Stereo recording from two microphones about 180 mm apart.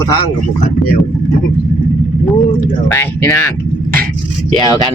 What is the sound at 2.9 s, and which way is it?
Speech, 15° left (ahead or behind).